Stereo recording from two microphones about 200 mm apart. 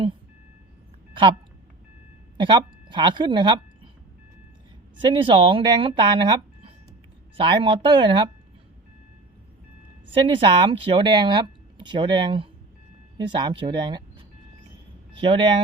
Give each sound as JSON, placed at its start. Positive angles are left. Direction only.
{"t": 1.1, "sound": "a sound", "side_deg": -25}
{"t": 2.4, "sound": "speech", "side_deg": -25}
{"t": 4.9, "sound": "speech", "side_deg": -25}
{"t": 10.2, "sound": "speech", "side_deg": -25}
{"t": 15.2, "sound": "speech", "side_deg": -25}